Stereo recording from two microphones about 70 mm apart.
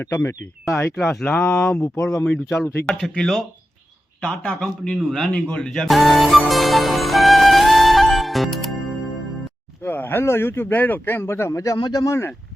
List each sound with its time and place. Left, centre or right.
0.0 s speech: left
0.9 s a man's voice: centre
1.2 s speech: left
2.3 s speech: left
2.8 s a man's voice: centre
5.8 s music: centre
9.8 s speech: left
11.5 s speech: left
11.8 s speech: left
12.0 s speech: left